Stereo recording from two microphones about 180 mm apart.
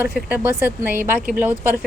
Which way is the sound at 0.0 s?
10° right (ahead or behind).